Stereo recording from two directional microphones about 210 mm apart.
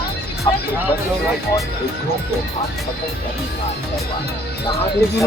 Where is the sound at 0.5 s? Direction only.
20° left (ahead or behind).